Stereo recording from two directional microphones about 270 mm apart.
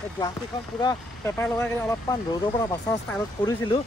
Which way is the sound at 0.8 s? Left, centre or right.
Centre.